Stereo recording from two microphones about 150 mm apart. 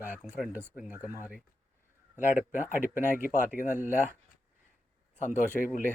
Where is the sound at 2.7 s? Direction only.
65° left (ahead or behind).